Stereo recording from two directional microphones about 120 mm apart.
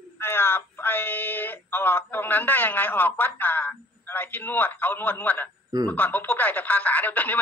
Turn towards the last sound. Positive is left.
turn(degrees=15)  # may be behind; listen again after turning